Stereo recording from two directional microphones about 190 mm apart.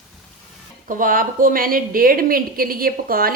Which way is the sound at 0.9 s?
45° right (ahead or behind).